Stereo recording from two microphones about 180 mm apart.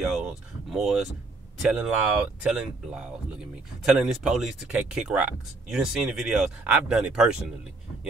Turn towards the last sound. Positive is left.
turn(degrees=-5)  # may be behind; listen again after turning